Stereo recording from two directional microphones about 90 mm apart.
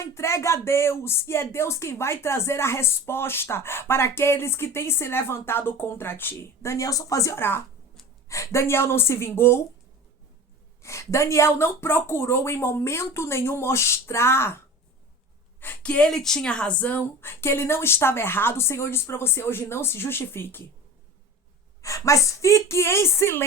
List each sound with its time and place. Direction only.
0.0 s speech: 30° left (ahead or behind)
10.8 s speech: 35° left (ahead or behind)
15.6 s speech: 15° left (ahead or behind)
21.8 s a woman's voice: 35° left (ahead or behind)